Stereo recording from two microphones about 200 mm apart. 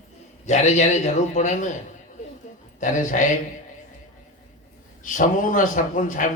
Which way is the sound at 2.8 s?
40° left (ahead or behind).